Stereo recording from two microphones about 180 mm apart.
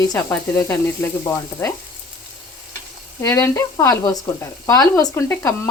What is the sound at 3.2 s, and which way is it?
Speech, 15° left (ahead or behind).